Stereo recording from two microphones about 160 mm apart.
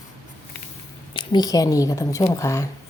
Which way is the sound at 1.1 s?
30° left (ahead or behind).